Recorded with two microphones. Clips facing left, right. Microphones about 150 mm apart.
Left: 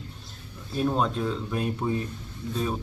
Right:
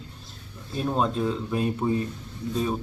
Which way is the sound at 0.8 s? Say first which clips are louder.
Even; centre (ahead or behind).